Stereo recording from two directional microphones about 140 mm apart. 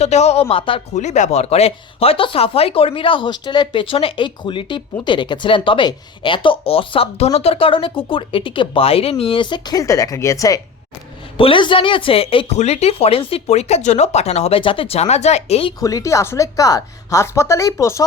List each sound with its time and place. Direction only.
0.0 s speech: 50° left (ahead or behind)
0.9 s speech: 60° left (ahead or behind); by 10.6 s 25° left (ahead or behind)
11.3 s speech: 40° left (ahead or behind)
15.8 s speech: 25° left (ahead or behind)